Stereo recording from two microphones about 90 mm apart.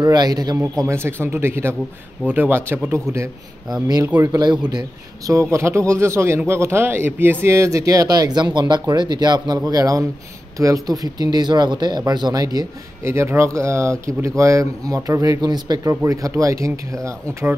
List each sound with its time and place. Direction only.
0.0 s speech: 45° right (ahead or behind)
0.7 s speech: 30° right (ahead or behind)
4.2 s a man's voice: 45° right (ahead or behind)
13.0 s a man's voice: 30° right (ahead or behind); by 15.8 s 50° right (ahead or behind)
15.8 s a man's voice: 35° right (ahead or behind)